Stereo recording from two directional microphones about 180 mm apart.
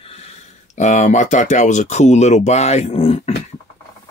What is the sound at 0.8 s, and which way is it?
Speech, 40° left (ahead or behind).